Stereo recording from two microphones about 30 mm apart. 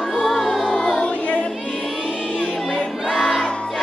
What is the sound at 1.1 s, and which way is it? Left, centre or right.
Music, left.